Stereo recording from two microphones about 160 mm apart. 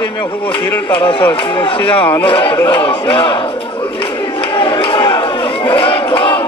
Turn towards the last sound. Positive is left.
turn(degrees=35)  # may be behind; listen again after turning